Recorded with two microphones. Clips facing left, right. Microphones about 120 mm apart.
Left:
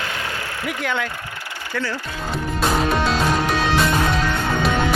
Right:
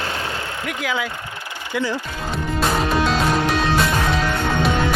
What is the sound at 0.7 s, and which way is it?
Speech, centre (ahead or behind).